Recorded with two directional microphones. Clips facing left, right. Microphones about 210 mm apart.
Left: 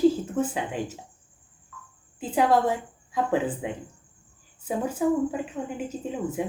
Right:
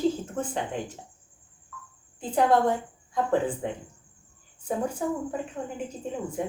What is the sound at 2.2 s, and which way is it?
A woman's voice, 5° left (ahead or behind).